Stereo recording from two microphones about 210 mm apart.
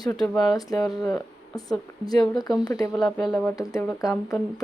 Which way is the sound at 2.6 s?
20° left (ahead or behind).